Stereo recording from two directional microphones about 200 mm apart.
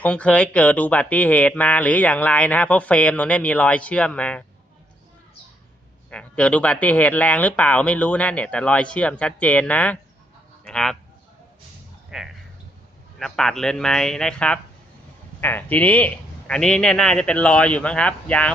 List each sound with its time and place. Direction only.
0.0 s speech: 5° left (ahead or behind)
6.1 s speech: 5° left (ahead or behind)
12.1 s a man's voice: 5° right (ahead or behind)